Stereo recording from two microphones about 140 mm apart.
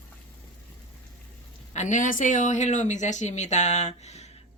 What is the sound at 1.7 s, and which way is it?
Speech, 60° left (ahead or behind).